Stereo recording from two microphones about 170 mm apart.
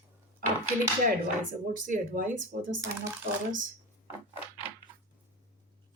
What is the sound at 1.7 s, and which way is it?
Speech, 50° right (ahead or behind).